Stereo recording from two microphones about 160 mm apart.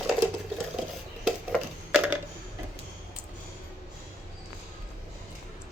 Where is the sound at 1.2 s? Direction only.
Centre (ahead or behind).